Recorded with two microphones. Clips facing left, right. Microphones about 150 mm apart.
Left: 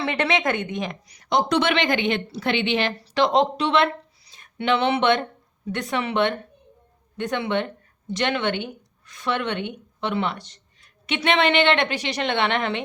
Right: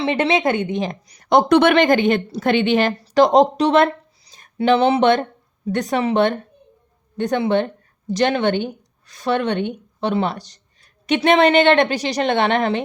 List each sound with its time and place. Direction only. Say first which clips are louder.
0.0 s a woman's voice: right 5 dB; 25° right (ahead or behind)